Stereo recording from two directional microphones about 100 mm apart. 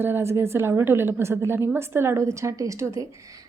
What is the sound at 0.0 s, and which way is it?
A woman's voice, 25° right (ahead or behind).